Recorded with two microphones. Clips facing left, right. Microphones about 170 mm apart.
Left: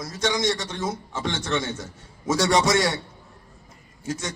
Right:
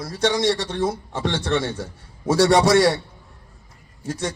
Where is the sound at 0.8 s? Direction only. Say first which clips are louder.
Right 1 dB; 60° right (ahead or behind).